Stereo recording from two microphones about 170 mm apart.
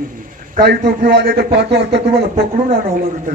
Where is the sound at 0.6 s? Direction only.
65° right (ahead or behind).